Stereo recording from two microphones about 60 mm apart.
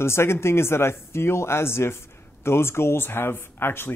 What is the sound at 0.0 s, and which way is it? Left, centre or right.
Speech, left.